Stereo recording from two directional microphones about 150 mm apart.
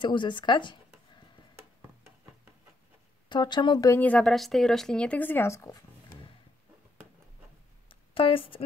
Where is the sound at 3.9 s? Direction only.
10° left (ahead or behind).